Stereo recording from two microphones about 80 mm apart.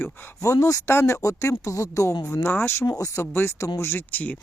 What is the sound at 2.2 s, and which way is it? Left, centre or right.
Speech, left.